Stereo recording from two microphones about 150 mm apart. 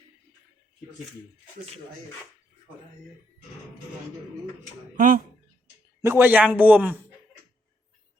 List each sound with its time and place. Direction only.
4.9 s speech: 70° right (ahead or behind)
6.0 s a man's voice: 15° right (ahead or behind)